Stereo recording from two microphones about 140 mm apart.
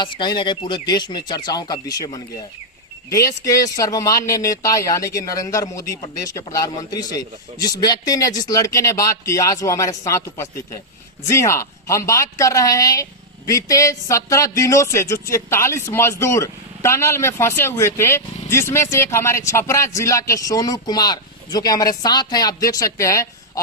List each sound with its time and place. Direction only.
0.0 s speech: 35° left (ahead or behind)